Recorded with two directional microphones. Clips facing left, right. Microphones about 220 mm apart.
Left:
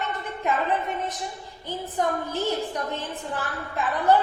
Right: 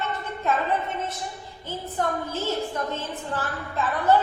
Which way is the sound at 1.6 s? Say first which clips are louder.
Left 1 dB; 15° left (ahead or behind).